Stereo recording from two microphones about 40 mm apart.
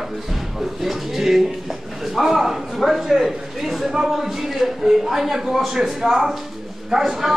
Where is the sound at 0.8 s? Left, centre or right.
Centre.